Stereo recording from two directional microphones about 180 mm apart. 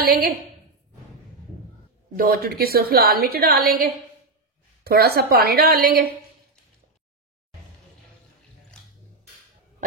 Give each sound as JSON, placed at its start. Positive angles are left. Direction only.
{"t": 0.0, "sound": "a woman's voice", "side_deg": -55}
{"t": 2.1, "sound": "a woman's voice", "side_deg": -55}